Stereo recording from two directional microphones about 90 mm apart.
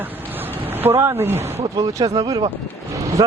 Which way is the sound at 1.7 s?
45° right (ahead or behind).